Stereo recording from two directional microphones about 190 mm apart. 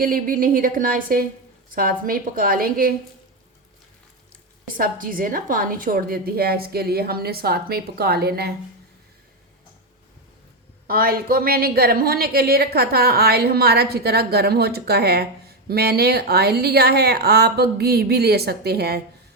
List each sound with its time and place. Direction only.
0.0 s a woman's voice: 50° right (ahead or behind)
4.6 s a woman's voice: 45° right (ahead or behind)
10.8 s a woman's voice: 50° right (ahead or behind)